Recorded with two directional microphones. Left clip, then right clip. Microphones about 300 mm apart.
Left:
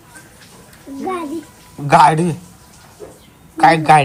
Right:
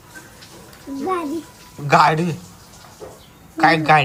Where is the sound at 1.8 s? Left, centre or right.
Centre.